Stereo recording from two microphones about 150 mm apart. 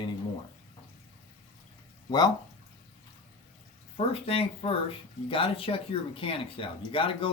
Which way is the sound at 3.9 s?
40° left (ahead or behind).